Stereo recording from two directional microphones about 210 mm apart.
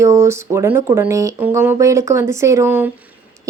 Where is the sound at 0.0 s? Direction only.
15° right (ahead or behind).